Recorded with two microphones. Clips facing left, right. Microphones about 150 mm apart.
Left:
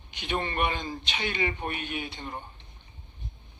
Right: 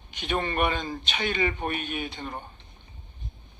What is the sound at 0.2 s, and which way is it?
Speech, 45° right (ahead or behind).